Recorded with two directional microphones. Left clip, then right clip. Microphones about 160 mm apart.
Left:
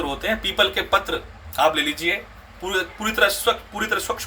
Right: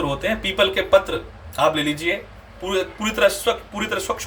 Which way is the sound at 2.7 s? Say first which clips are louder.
Right 1 dB; 15° right (ahead or behind).